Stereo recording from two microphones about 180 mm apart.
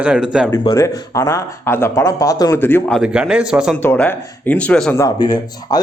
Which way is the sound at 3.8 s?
10° left (ahead or behind).